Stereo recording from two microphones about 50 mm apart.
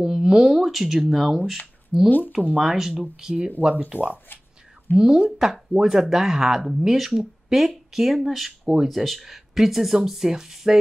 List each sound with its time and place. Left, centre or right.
0.0 s speech: centre
2.0 s speech: left
2.5 s speech: centre
3.9 s speech: right
4.9 s speech: centre